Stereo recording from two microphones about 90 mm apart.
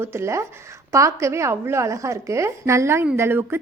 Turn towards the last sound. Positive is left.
turn(degrees=-25)  # may be behind; listen again after turning